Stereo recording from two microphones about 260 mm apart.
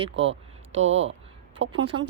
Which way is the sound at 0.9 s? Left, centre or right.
Right.